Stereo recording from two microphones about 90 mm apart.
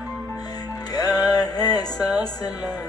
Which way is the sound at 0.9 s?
45° left (ahead or behind).